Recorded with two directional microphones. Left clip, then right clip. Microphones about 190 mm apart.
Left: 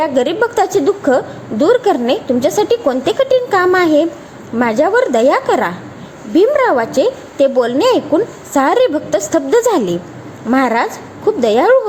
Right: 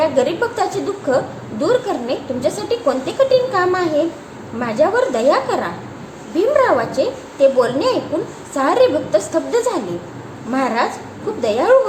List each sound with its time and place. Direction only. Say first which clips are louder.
0.0 s a woman's voice: left 2 dB; 40° left (ahead or behind)